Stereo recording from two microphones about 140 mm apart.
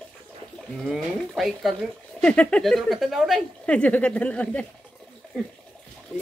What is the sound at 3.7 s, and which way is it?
Speech, 10° left (ahead or behind).